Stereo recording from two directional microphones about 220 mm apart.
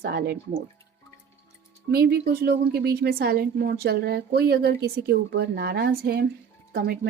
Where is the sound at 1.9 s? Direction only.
45° right (ahead or behind).